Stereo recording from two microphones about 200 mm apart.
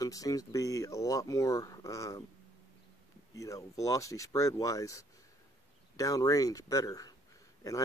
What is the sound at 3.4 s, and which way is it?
Speech, 15° left (ahead or behind).